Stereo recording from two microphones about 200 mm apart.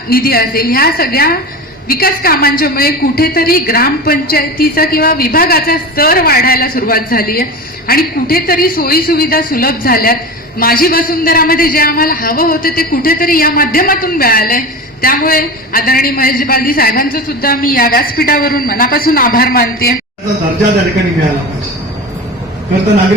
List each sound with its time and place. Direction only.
0.1 s a woman's voice: 50° left (ahead or behind)